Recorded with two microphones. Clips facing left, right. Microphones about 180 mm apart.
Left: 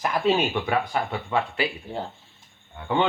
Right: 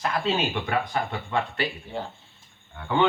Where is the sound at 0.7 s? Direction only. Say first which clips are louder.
Left 2 dB; 10° left (ahead or behind).